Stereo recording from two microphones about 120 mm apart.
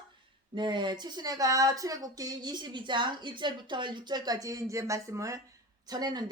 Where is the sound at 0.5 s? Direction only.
40° right (ahead or behind).